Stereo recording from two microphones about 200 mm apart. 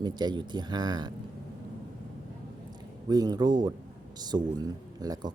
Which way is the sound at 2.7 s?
20° right (ahead or behind).